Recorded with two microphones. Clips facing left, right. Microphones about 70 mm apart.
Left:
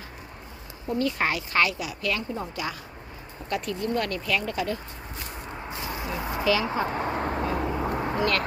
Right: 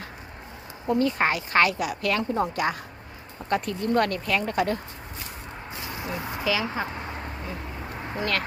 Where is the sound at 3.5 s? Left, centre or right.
Right.